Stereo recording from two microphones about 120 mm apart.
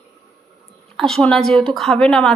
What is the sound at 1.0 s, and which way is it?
A woman's voice, 5° left (ahead or behind).